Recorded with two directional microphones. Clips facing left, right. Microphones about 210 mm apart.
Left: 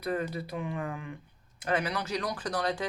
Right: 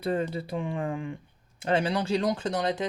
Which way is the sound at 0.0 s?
25° right (ahead or behind).